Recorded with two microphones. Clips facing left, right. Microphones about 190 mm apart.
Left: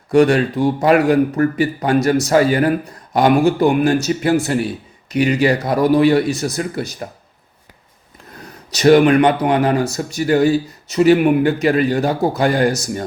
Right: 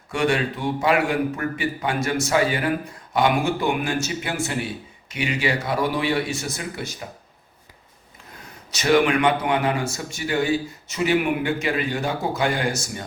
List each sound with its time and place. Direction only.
0.1 s speech: 40° left (ahead or behind)
8.7 s speech: 40° left (ahead or behind)